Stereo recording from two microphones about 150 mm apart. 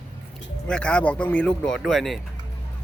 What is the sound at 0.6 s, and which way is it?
A man's voice, 10° left (ahead or behind).